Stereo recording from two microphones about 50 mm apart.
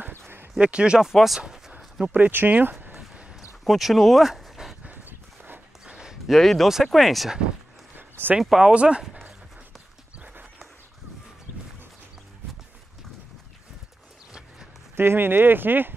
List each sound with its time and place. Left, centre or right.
0.6 s speech: right
1.1 s speech: centre
2.1 s speech: right
3.6 s speech: centre
5.9 s a sound: centre
6.2 s speech: centre
8.4 s speech: centre
8.7 s speech: right
15.0 s speech: right